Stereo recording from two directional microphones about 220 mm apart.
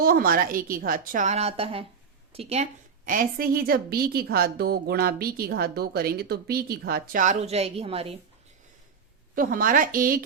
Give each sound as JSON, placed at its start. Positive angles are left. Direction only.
{"t": 0.0, "sound": "a woman's voice", "side_deg": -40}
{"t": 9.3, "sound": "a woman's voice", "side_deg": -40}